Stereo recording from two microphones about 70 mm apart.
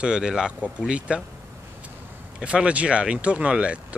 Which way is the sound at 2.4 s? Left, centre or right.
Centre.